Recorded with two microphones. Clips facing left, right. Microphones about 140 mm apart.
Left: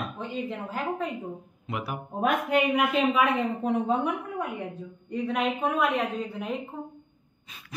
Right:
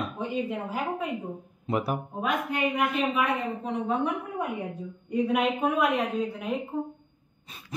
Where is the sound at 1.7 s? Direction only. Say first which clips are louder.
Right 6 dB; 35° right (ahead or behind).